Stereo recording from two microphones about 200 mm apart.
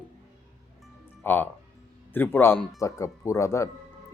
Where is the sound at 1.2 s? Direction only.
10° left (ahead or behind).